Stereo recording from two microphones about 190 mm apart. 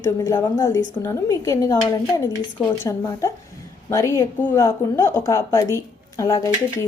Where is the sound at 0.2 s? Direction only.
15° left (ahead or behind).